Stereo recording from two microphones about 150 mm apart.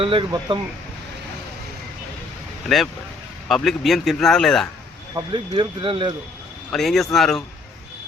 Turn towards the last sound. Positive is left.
turn(degrees=0)  # may be behind; listen again after turning